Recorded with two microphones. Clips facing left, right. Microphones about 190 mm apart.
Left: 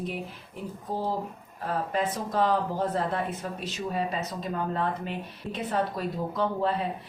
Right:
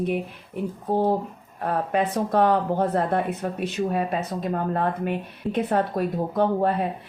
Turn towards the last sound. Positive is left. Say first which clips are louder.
# right 5 dB
turn(degrees=-55)  # may be behind; listen again after turning